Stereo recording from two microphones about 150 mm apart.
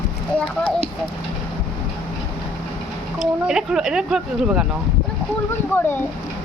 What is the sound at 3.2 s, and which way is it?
Speech, 5° right (ahead or behind).